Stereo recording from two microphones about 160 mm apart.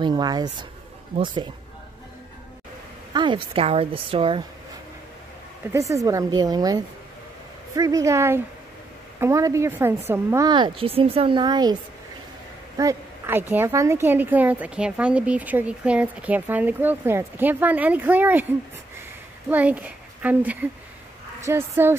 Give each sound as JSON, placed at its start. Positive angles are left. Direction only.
{"t": 0.0, "sound": "a woman's voice", "side_deg": -25}
{"t": 3.1, "sound": "a woman's voice", "side_deg": -30}
{"t": 5.7, "sound": "a woman's voice", "side_deg": -20}
{"t": 10.5, "sound": "a woman's voice", "side_deg": -30}
{"t": 12.7, "sound": "a woman's voice", "side_deg": -15}
{"t": 19.5, "sound": "a child's voice", "side_deg": -10}